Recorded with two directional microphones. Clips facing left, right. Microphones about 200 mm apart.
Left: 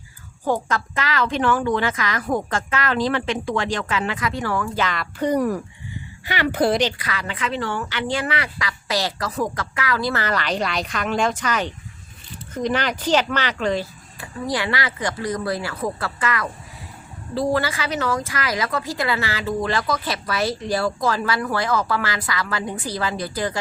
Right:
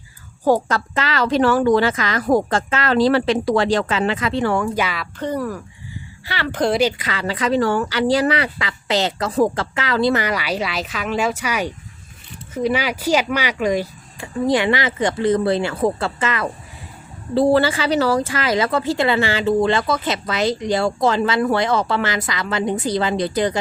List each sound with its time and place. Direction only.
0.4 s a woman's voice: 35° right (ahead or behind)
4.7 s speech: 10° right (ahead or behind)
5.2 s speech: 15° left (ahead or behind)
7.0 s speech: 30° right (ahead or behind); by 13.8 s 10° right (ahead or behind)
14.2 s speech: 25° right (ahead or behind)